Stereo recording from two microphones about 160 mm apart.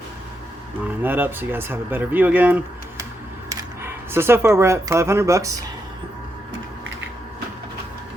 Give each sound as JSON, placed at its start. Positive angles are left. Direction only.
{"t": 1.0, "sound": "speech", "side_deg": -10}